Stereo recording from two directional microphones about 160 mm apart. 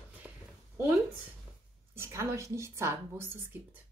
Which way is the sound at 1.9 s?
15° right (ahead or behind).